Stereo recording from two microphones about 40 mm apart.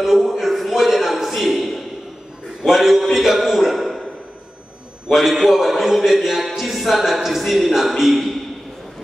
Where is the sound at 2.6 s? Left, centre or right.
Centre.